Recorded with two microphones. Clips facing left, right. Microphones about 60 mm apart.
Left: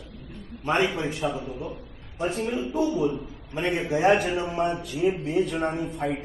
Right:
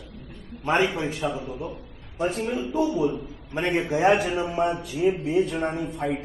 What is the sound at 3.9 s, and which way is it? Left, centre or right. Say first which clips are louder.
Speech: even; centre.